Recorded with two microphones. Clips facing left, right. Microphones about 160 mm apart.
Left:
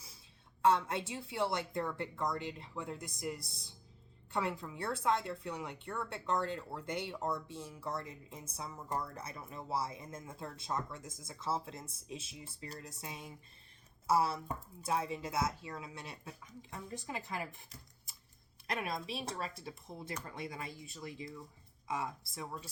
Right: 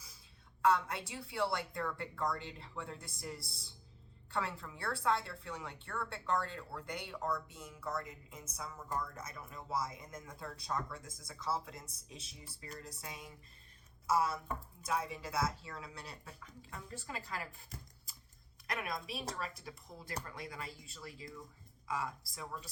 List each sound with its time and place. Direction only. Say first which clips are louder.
0.6 s a woman's voice: left 2 dB; 25° left (ahead or behind)
18.7 s a woman's voice: left 2 dB; 25° left (ahead or behind)